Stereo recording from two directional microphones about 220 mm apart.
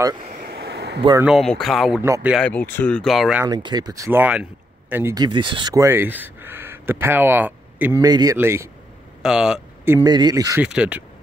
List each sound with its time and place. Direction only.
0.4 s a sound: 45° right (ahead or behind)
1.2 s speech: centre (ahead or behind)
2.0 s speech: 10° right (ahead or behind)
2.3 s speech: 5° left (ahead or behind)
3.4 s speech: 20° right (ahead or behind); by 9.9 s 5° right (ahead or behind)
9.9 s speech: 20° right (ahead or behind)